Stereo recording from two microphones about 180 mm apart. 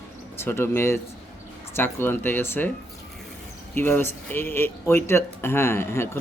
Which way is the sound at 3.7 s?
15° left (ahead or behind).